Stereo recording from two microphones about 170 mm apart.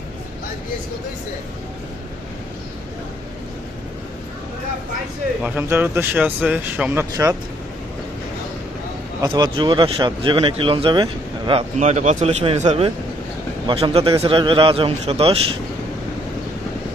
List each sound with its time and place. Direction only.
5.4 s speech: 10° right (ahead or behind)
9.2 s speech: 30° right (ahead or behind)
11.8 s a man's voice: 45° right (ahead or behind)